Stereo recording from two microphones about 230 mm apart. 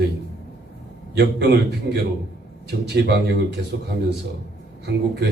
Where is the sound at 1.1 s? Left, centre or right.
Right.